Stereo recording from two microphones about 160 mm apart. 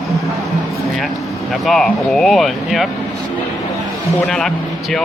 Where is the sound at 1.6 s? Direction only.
Centre (ahead or behind).